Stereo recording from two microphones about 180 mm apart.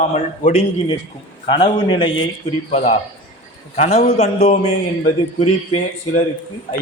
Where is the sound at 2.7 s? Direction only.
35° left (ahead or behind).